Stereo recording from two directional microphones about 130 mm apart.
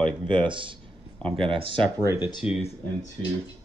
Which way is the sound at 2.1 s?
40° left (ahead or behind).